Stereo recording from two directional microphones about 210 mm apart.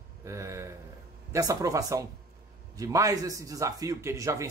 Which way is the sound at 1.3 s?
15° right (ahead or behind).